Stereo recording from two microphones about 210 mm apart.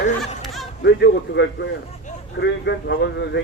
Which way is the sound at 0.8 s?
55° left (ahead or behind).